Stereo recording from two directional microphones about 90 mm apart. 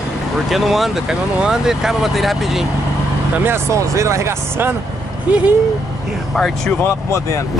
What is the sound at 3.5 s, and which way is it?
Speech, 35° right (ahead or behind).